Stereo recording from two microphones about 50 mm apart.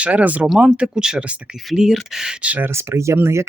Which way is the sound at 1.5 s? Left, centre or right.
Centre.